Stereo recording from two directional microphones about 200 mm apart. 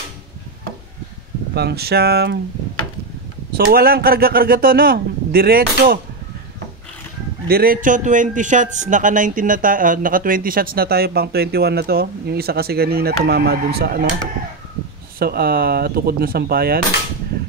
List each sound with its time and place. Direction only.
1.5 s a man's voice: 55° right (ahead or behind)
3.5 s a man's voice: 50° right (ahead or behind)
7.4 s a man's voice: 50° right (ahead or behind)
15.1 s a man's voice: 50° right (ahead or behind)